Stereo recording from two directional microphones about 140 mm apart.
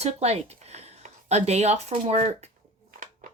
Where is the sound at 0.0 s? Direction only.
50° right (ahead or behind).